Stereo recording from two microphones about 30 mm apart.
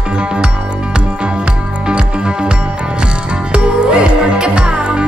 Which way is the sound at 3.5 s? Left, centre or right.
Right.